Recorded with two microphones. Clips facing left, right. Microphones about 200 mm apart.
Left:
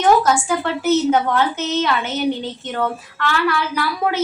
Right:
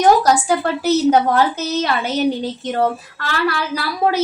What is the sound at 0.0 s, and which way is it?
A woman's voice, 40° right (ahead or behind).